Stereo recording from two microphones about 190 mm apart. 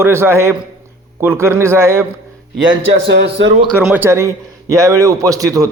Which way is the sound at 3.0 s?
70° right (ahead or behind).